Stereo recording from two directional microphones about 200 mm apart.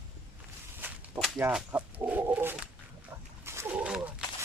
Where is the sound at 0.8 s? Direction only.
10° right (ahead or behind).